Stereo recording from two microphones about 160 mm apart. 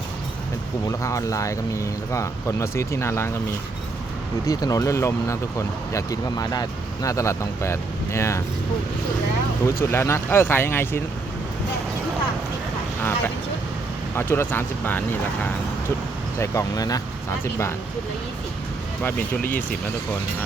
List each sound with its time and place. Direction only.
0.9 s speech: 20° left (ahead or behind)
4.4 s speech: 20° left (ahead or behind)
9.8 s speech: 15° left (ahead or behind)
13.0 s vehicle: 15° left (ahead or behind)
14.2 s speech: 15° left (ahead or behind)
16.4 s speech: 20° left (ahead or behind)
19.0 s speech: 10° left (ahead or behind)